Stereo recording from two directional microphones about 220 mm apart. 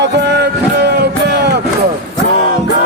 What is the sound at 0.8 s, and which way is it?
Music, 50° right (ahead or behind).